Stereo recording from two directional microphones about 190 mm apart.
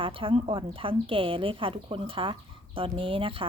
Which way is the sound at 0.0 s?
30° right (ahead or behind).